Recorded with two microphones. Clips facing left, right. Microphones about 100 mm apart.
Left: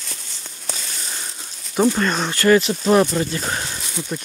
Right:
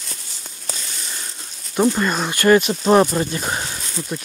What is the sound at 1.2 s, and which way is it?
Crumpling, 5° left (ahead or behind).